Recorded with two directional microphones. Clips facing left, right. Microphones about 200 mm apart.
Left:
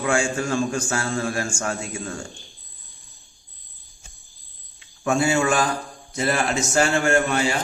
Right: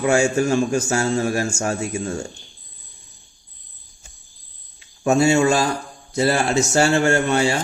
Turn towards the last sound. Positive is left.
turn(degrees=-30)  # may be behind; listen again after turning